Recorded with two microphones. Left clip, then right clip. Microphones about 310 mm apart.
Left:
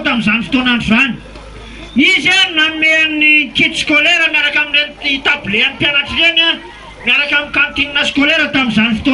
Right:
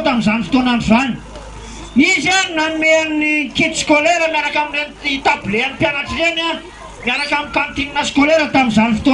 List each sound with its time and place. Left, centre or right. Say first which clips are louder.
0.0 s a man's voice: left 2 dB; centre